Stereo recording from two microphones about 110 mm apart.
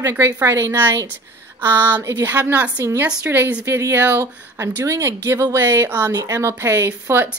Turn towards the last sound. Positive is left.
turn(degrees=-25)  # may be behind; listen again after turning